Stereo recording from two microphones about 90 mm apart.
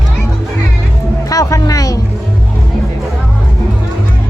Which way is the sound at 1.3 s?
40° left (ahead or behind).